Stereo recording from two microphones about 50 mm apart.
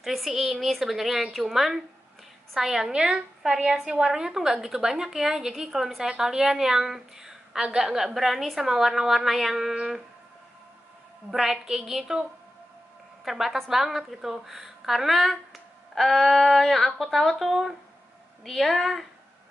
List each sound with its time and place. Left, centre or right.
0.0 s a woman's voice: centre
11.2 s a woman's voice: centre